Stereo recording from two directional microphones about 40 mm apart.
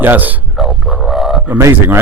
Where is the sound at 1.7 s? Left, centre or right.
Right.